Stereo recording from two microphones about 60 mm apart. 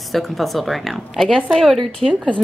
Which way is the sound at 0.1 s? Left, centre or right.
Centre.